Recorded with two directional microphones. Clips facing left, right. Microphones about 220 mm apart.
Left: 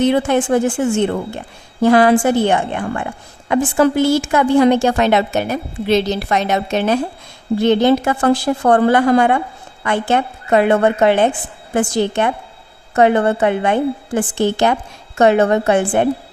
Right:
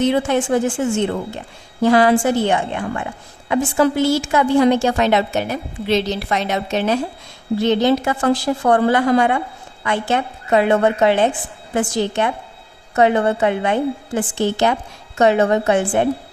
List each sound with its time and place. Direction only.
0.0 s a woman's voice: 55° left (ahead or behind)
1.8 s a woman's voice: 55° left (ahead or behind)